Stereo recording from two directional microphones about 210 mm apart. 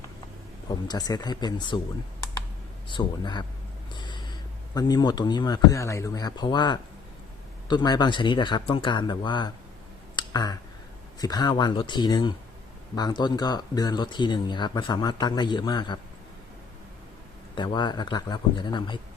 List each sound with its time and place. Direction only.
0.7 s speech: 20° left (ahead or behind)
2.9 s speech: 20° left (ahead or behind)
10.2 s a sound: 20° left (ahead or behind)
11.2 s speech: 20° left (ahead or behind)
17.5 s speech: 20° left (ahead or behind)